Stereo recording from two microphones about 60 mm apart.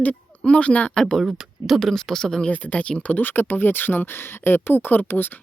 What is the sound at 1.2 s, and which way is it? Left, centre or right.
Speech, centre.